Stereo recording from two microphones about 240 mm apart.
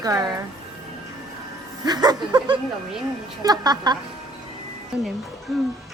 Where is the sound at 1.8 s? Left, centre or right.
Centre.